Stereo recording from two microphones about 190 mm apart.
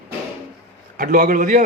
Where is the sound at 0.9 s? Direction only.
45° right (ahead or behind).